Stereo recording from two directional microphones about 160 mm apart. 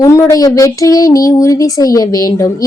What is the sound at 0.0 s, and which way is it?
Speech, 20° left (ahead or behind).